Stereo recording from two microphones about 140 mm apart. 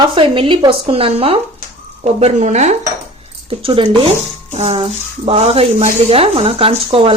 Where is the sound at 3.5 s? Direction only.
40° right (ahead or behind).